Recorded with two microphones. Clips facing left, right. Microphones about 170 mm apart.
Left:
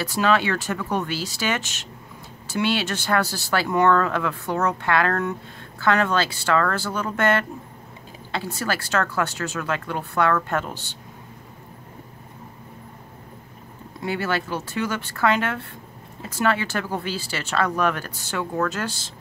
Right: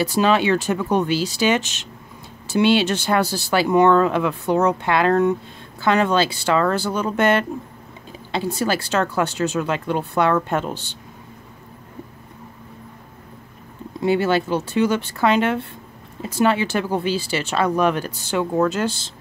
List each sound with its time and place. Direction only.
0.0 s speech: 20° right (ahead or behind)
14.0 s speech: 20° right (ahead or behind)